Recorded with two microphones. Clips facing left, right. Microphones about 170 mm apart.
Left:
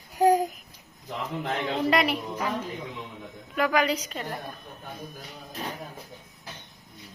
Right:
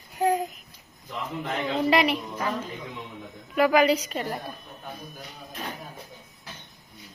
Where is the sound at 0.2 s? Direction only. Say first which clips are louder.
Left 4 dB; 40° left (ahead or behind).